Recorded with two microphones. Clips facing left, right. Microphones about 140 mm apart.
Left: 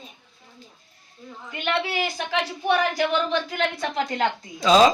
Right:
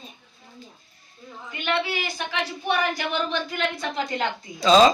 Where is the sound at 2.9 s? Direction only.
90° left.